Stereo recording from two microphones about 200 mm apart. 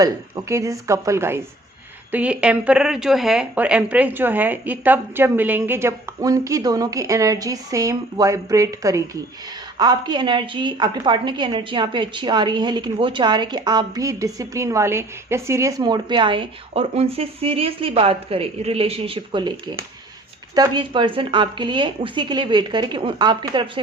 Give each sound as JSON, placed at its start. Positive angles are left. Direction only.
{"t": 0.0, "sound": "a woman's voice", "side_deg": -15}